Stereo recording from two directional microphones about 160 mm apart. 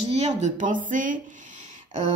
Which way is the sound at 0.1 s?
45° right (ahead or behind).